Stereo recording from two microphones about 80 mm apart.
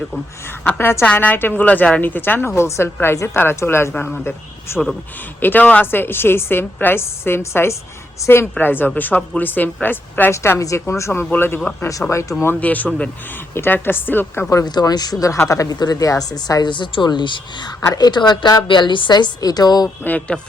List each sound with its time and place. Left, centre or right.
0.8 s a woman's voice: left
3.9 s speech: centre
4.2 s a woman's voice: left
8.2 s a woman's voice: left
8.5 s a woman's voice: left
11.9 s a woman's voice: left
12.5 s a woman's voice: centre
14.6 s a woman's voice: left
16.7 s speech: left
17.9 s a woman's voice: left
20.1 s speech: centre